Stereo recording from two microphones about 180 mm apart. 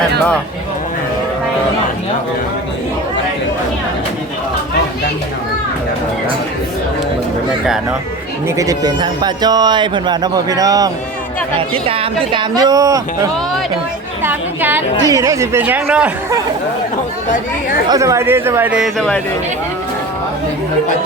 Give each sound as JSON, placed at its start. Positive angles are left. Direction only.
{"t": 8.4, "sound": "a woman's voice", "side_deg": -20}
{"t": 17.8, "sound": "a woman's voice", "side_deg": -20}